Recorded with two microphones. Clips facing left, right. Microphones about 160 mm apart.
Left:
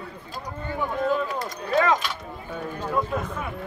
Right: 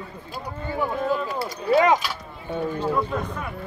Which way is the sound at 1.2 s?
10° right (ahead or behind).